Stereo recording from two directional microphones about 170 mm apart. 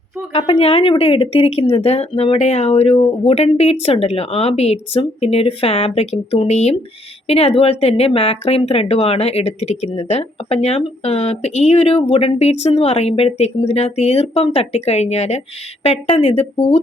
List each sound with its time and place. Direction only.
0.3 s speech: 35° left (ahead or behind)